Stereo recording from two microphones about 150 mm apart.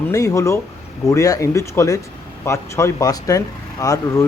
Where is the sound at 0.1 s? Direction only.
20° left (ahead or behind).